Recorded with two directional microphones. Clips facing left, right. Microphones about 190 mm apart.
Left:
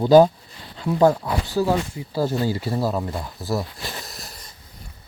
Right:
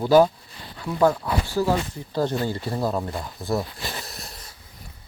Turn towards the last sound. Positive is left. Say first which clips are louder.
# even
turn(degrees=0)  # may be behind; listen again after turning